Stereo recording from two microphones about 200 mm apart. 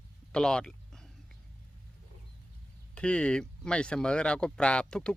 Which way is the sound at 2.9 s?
5° left (ahead or behind).